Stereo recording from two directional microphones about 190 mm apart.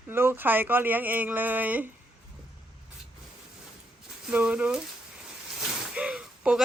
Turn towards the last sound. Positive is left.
turn(degrees=-5)  # may be behind; listen again after turning